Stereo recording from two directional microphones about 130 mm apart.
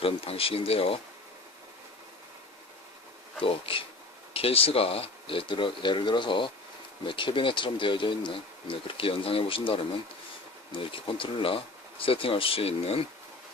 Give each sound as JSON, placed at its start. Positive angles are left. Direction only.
{"t": 0.0, "sound": "speech", "side_deg": 45}
{"t": 3.4, "sound": "speech", "side_deg": 45}